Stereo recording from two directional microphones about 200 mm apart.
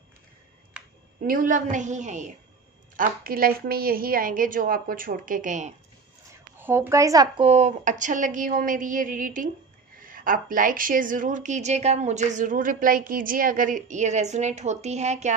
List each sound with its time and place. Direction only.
1.2 s a woman's voice: 45° right (ahead or behind)
6.6 s speech: 10° right (ahead or behind)
7.4 s a woman's voice: 35° right (ahead or behind)